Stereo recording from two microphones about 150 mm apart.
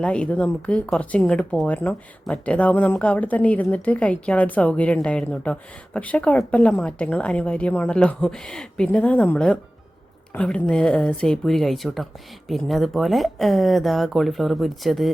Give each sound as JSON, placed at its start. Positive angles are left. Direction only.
{"t": 0.0, "sound": "speech", "side_deg": 5}